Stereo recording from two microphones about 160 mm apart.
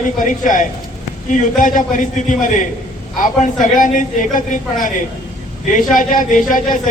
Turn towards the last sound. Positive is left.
turn(degrees=55)  # may be behind; listen again after turning